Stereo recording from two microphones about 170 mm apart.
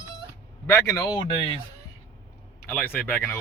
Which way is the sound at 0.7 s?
20° left (ahead or behind).